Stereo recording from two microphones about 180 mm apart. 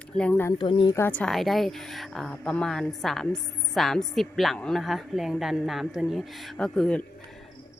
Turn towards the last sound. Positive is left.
turn(degrees=5)  # may be behind; listen again after turning